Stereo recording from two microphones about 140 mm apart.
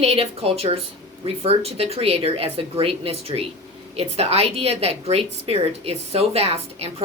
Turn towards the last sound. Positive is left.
turn(degrees=-45)  # may be behind; listen again after turning